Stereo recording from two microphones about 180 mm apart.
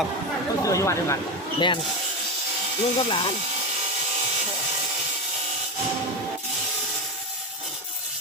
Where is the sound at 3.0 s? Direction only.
30° left (ahead or behind).